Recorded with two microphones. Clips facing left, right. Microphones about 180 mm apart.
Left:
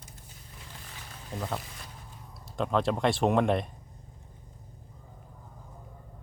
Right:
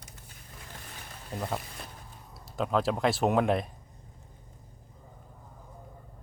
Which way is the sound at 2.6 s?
5° right (ahead or behind).